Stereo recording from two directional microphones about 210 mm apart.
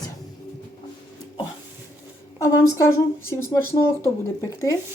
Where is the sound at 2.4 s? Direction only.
15° left (ahead or behind).